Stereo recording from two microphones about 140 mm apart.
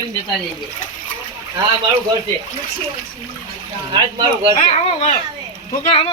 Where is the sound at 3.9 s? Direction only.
35° right (ahead or behind).